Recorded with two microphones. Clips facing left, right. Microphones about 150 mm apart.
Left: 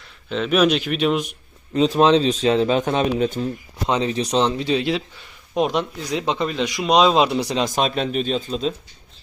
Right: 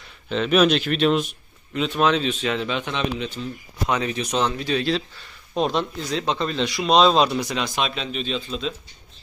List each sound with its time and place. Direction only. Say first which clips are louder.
0.3 s a man's voice: even; centre (ahead or behind)
1.7 s speech: left 6 dB; 35° left (ahead or behind)
3.8 s a man's voice: left 3 dB; 25° left (ahead or behind)
7.3 s speech: left 4 dB; 30° left (ahead or behind)